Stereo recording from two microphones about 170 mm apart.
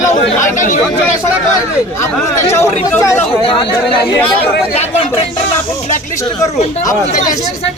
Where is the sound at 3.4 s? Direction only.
30° left (ahead or behind).